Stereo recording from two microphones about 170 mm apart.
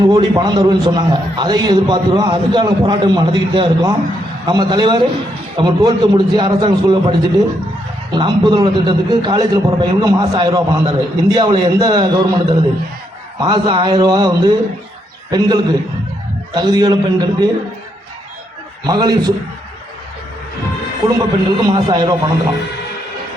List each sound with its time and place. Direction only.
0.2 s a man's voice: 25° right (ahead or behind)
18.9 s a man's voice: 25° right (ahead or behind)
21.2 s a man's voice: 20° right (ahead or behind)